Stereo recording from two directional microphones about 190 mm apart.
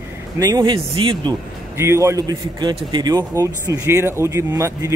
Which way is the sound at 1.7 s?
15° right (ahead or behind).